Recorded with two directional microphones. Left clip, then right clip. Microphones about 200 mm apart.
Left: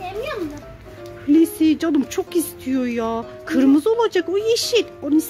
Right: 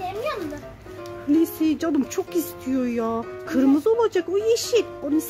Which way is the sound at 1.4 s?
Centre (ahead or behind).